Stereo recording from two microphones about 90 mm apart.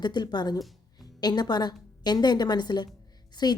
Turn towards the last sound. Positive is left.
turn(degrees=50)  # may be behind; listen again after turning